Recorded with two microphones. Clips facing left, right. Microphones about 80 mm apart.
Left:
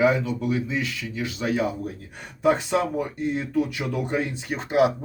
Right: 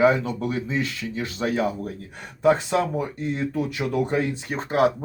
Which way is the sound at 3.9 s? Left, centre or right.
Right.